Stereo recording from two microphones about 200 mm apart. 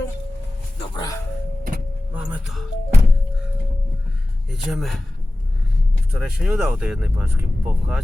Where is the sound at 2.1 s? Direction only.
5° right (ahead or behind).